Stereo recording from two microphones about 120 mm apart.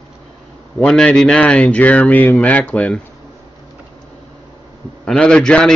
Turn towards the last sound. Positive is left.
turn(degrees=5)  # may be behind; listen again after turning